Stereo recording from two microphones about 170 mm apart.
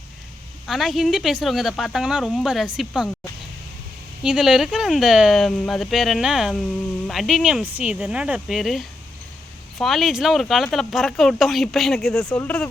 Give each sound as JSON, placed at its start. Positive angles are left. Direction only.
{"t": 0.7, "sound": "speech", "side_deg": 0}
{"t": 4.2, "sound": "speech", "side_deg": -5}